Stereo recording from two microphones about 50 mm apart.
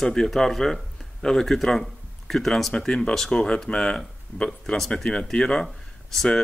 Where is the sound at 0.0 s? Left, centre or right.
Centre.